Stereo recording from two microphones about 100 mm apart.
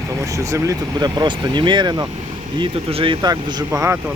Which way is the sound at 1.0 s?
45° right (ahead or behind).